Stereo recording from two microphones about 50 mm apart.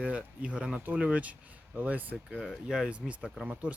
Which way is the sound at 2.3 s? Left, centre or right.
Centre.